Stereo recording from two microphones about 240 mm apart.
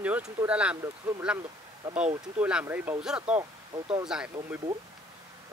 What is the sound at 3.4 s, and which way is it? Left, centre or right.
Speech, centre.